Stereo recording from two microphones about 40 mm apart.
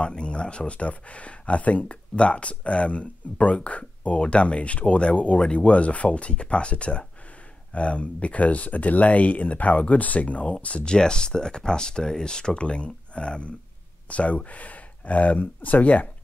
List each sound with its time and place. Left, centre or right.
0.0 s speech: left
5.4 s speech: left
11.0 s speech: centre; by 16.1 s left